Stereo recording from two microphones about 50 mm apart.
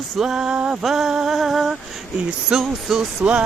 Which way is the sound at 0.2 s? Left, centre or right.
Centre.